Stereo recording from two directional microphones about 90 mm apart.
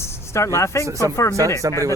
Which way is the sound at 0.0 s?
30° left (ahead or behind).